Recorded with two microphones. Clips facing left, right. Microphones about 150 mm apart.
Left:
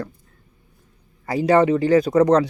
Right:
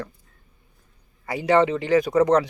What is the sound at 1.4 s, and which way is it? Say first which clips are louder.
Speech: left 3 dB; 20° right (ahead or behind).